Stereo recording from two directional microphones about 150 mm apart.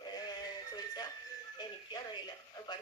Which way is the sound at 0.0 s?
25° left (ahead or behind).